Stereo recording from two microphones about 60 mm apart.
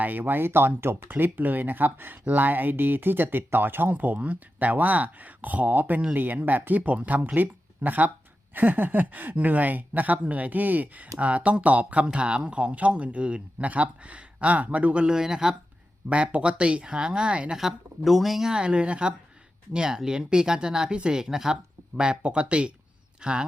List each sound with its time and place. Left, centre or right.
0.0 s speech: right
15.0 s speech: centre
16.0 s speech: right
17.6 s speech: centre